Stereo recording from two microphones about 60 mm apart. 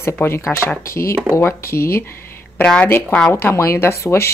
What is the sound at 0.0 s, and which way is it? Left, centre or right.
Speech, left.